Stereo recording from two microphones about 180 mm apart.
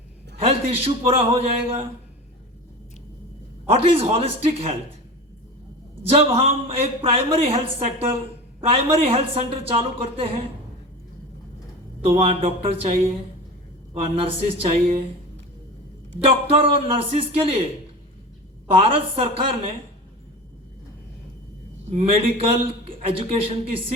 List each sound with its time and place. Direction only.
0.3 s a man's voice: 35° right (ahead or behind)
3.7 s a man's voice: 30° right (ahead or behind)
6.1 s a man's voice: 30° right (ahead or behind)
12.0 s a man's voice: 35° right (ahead or behind)
14.0 s a man's voice: 30° right (ahead or behind)
16.5 s a man's voice: 30° right (ahead or behind)
18.7 s a man's voice: 30° right (ahead or behind)
21.8 s a man's voice: 35° right (ahead or behind)